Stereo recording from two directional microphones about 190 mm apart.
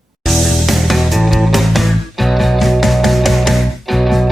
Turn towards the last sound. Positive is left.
turn(degrees=0)  # may be behind; listen again after turning